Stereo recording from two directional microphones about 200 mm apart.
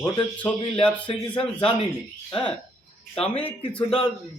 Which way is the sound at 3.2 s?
30° left (ahead or behind).